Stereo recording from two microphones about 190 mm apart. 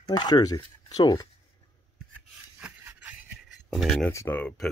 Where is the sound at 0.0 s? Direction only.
20° left (ahead or behind).